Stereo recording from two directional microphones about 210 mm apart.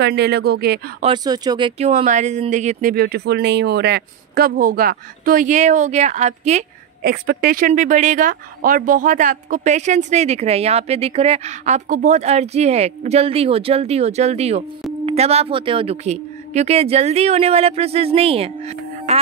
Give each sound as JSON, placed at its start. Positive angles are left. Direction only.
{"t": 0.0, "sound": "speech", "side_deg": -50}
{"t": 1.0, "sound": "speech", "side_deg": -20}
{"t": 1.8, "sound": "speech", "side_deg": -30}
{"t": 7.0, "sound": "speech", "side_deg": -50}